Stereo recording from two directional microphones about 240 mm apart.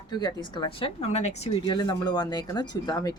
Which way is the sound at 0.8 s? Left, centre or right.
Left.